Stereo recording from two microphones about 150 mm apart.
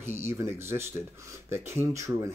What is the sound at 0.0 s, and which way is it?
Speech, 15° right (ahead or behind).